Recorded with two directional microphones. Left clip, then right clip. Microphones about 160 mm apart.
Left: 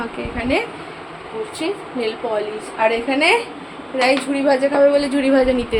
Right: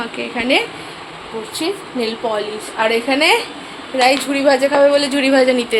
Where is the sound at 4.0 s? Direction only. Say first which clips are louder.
Right 3 dB; 30° right (ahead or behind); by 5.8 s 10° right (ahead or behind).